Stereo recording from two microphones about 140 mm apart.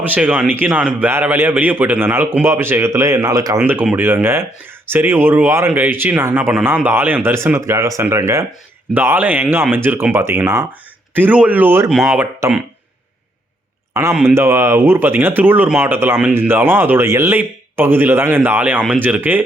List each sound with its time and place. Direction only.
0.0 s speech: 10° right (ahead or behind)
3.6 s speech: 10° right (ahead or behind)
11.9 s speech: 5° right (ahead or behind)
14.1 s speech: 5° right (ahead or behind)
14.3 s speech: 20° right (ahead or behind)